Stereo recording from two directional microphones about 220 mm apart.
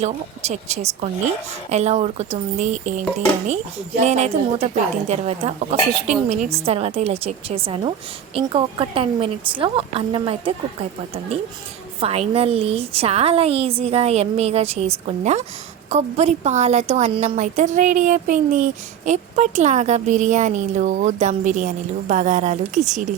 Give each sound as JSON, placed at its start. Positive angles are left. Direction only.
{"t": 0.0, "sound": "a woman's voice", "side_deg": -30}
{"t": 4.0, "sound": "a woman's voice", "side_deg": -30}
{"t": 11.9, "sound": "a woman's voice", "side_deg": -30}